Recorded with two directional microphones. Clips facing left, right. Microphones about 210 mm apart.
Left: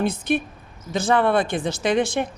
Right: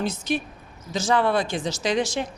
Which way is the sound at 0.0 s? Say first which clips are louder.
Left 4 dB; 55° left (ahead or behind).